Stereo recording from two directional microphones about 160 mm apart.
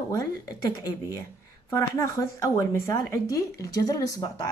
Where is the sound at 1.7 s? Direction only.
20° left (ahead or behind).